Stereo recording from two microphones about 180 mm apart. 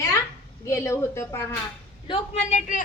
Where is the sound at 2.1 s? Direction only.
40° left (ahead or behind).